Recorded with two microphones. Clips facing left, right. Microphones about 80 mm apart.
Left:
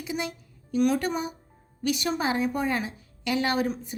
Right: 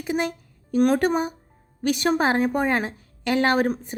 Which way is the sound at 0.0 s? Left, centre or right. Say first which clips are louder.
Right 6 dB; right.